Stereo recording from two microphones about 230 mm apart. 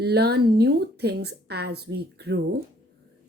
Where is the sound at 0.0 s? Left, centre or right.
Right.